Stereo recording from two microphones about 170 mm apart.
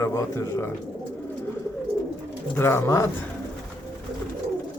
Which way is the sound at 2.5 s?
15° left (ahead or behind).